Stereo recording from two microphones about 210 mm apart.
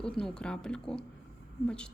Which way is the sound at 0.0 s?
5° left (ahead or behind).